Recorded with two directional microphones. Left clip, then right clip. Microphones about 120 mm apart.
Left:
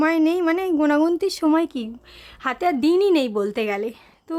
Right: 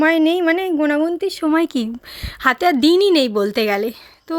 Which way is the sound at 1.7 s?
45° right (ahead or behind).